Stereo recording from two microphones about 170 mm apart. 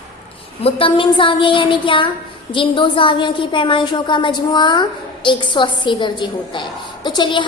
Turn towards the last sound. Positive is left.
turn(degrees=25)  # may be behind; listen again after turning